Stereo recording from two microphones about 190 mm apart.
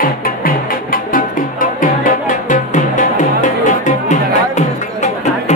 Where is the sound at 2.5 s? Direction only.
40° left (ahead or behind).